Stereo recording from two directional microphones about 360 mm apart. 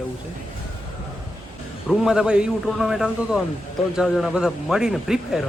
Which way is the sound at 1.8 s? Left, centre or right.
Centre.